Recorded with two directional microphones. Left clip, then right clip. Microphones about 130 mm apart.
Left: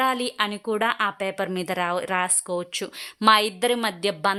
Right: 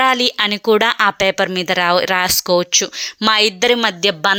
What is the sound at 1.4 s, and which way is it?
Speech, 15° right (ahead or behind).